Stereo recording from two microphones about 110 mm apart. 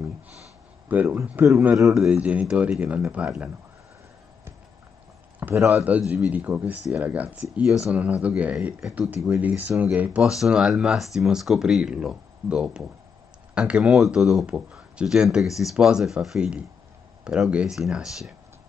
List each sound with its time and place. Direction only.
1.1 s speech: 15° right (ahead or behind)
5.4 s speech: 20° right (ahead or behind); by 18.3 s 5° right (ahead or behind)